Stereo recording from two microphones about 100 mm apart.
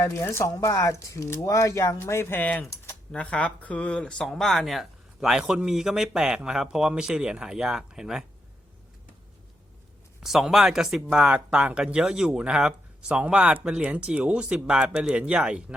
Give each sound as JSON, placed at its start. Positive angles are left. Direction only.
{"t": 0.0, "sound": "speech", "side_deg": 30}
{"t": 10.2, "sound": "speech", "side_deg": -5}